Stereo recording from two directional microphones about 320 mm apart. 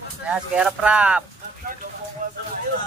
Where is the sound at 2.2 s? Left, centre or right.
Right.